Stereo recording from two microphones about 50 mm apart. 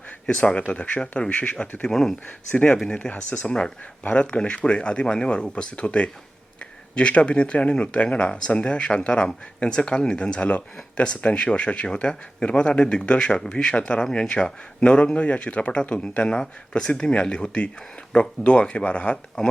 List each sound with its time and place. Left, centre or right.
0.3 s speech: left
1.3 s speech: left
1.9 s speech: centre
2.2 s speech: left
2.8 s speech: centre
3.1 s speech: left